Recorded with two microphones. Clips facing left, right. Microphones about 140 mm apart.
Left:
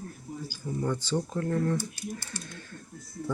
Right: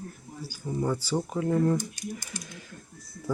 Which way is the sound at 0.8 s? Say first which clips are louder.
Right 1 dB; 10° right (ahead or behind).